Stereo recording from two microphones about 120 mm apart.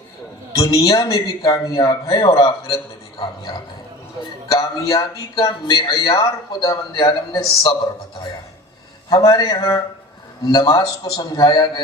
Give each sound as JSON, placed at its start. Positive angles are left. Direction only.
{"t": 0.5, "sound": "a man's voice", "side_deg": 30}
{"t": 9.0, "sound": "speech", "side_deg": 35}